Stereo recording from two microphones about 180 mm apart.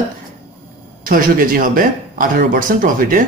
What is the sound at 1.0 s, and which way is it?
Speech, 50° right (ahead or behind).